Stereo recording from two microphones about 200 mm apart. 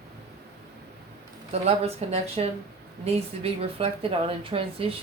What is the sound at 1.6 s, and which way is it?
Speech, 30° right (ahead or behind).